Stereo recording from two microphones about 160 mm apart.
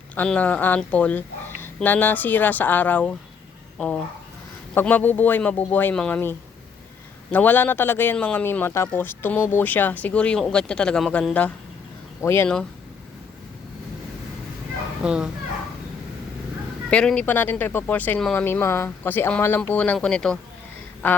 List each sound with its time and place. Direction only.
0.2 s a man's voice: 10° left (ahead or behind)
4.7 s a man's voice: 10° left (ahead or behind)
15.0 s speech: 5° right (ahead or behind)
16.9 s a man's voice: 5° left (ahead or behind)